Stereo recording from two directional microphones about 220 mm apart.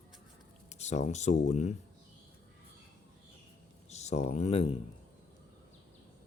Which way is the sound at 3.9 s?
30° left (ahead or behind).